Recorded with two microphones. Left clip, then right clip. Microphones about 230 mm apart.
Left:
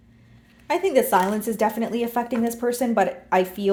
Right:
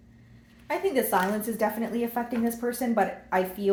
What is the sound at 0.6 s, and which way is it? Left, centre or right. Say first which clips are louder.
A woman's voice: left 6 dB; left.